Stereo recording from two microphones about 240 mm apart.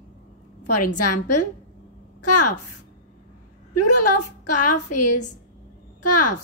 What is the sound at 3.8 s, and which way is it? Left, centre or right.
A woman's voice, left.